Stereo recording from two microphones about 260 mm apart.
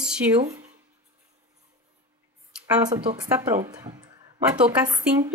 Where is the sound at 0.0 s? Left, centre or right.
Centre.